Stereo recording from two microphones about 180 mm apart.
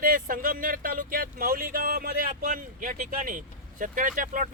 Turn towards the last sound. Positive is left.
turn(degrees=-45)  # may be behind; listen again after turning